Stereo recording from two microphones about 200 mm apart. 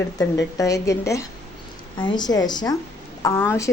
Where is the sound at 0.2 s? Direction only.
15° left (ahead or behind).